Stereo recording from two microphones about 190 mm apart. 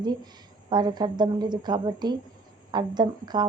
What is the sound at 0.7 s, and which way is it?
Speech, 20° right (ahead or behind).